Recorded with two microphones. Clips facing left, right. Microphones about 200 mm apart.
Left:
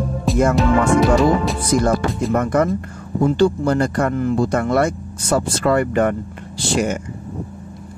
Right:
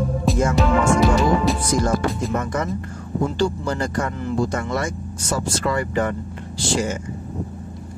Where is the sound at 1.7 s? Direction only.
60° left (ahead or behind).